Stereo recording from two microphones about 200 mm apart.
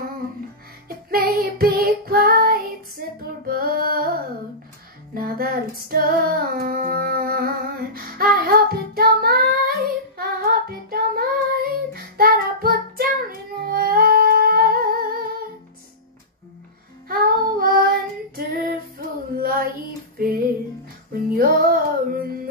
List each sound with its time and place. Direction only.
0.8 s child singing: 50° right (ahead or behind)
3.4 s music: 50° right (ahead or behind)
5.1 s female singing: 50° right (ahead or behind)
17.1 s child singing: 45° right (ahead or behind)
20.2 s music: 45° right (ahead or behind)